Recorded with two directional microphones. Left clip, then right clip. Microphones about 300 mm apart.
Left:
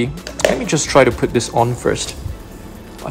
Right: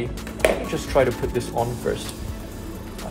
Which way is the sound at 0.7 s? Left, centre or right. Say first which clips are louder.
Left 8 dB; left.